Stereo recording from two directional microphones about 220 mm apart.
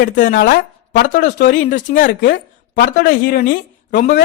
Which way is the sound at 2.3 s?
55° left (ahead or behind).